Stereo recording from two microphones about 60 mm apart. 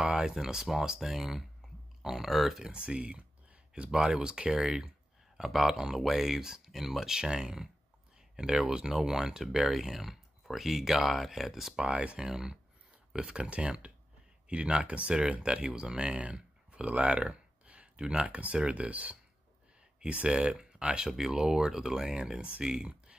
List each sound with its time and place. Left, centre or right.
0.0 s speech: centre
1.6 s a sound: centre
2.0 s speech: centre
2.7 s speech: centre
11.8 s speech: centre
12.3 s speech: centre